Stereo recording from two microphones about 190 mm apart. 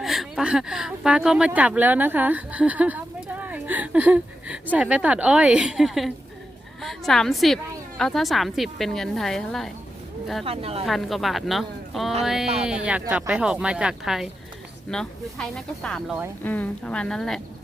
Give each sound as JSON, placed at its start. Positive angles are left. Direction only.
{"t": 0.0, "sound": "a woman's voice", "side_deg": 0}
{"t": 10.4, "sound": "speech", "side_deg": -30}
{"t": 10.8, "sound": "a woman's voice", "side_deg": 0}